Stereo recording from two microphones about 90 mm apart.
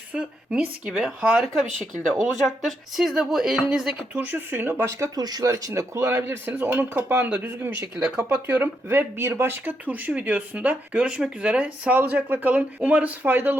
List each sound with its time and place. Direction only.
0.1 s speech: 15° right (ahead or behind); by 5.2 s 35° right (ahead or behind)
5.2 s a man's voice: 45° right (ahead or behind); by 7.3 s 25° right (ahead or behind)
8.4 s speech: 20° right (ahead or behind)